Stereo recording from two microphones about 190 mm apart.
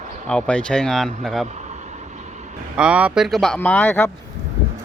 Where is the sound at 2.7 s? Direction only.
5° right (ahead or behind); by 4.1 s 10° left (ahead or behind).